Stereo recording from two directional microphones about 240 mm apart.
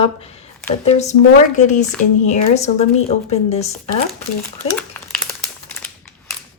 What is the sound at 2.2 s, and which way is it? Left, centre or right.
Speech, left.